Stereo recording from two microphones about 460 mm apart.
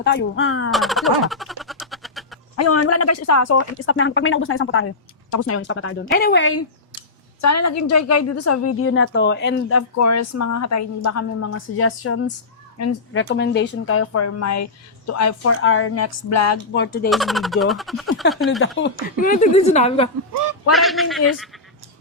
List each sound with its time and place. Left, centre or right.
0.0 s speech: left
0.7 s a sound: centre
2.6 s a woman's voice: left
16.7 s speech: left
17.1 s speech: centre
18.8 s speech: centre
20.7 s speech: centre